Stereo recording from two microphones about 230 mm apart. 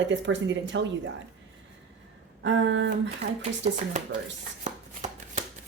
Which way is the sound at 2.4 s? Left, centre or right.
Right.